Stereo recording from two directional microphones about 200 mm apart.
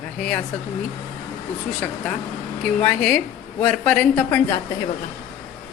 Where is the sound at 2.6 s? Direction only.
10° left (ahead or behind).